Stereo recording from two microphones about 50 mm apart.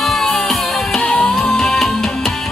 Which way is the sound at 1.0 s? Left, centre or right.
Left.